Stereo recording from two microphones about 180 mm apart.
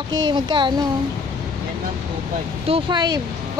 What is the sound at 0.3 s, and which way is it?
Speech, 25° right (ahead or behind).